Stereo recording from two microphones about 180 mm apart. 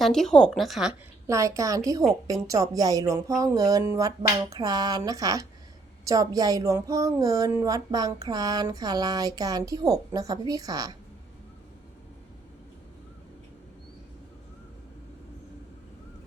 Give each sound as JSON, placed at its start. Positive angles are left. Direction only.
{"t": 0.0, "sound": "a woman's voice", "side_deg": 5}
{"t": 1.3, "sound": "speech", "side_deg": -15}